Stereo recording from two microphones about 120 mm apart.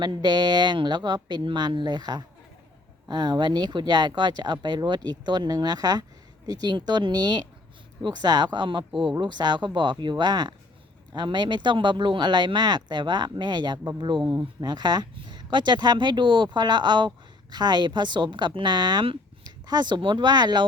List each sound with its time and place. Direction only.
0.0 s speech: 35° right (ahead or behind)